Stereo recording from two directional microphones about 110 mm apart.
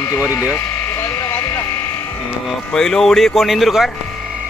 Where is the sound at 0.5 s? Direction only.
20° left (ahead or behind).